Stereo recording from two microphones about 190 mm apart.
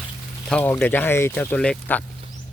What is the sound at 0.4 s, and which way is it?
Speech, 10° left (ahead or behind).